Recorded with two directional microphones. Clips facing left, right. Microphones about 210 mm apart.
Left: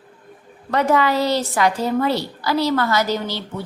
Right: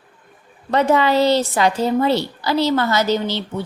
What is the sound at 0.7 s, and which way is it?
A woman's voice, 25° right (ahead or behind).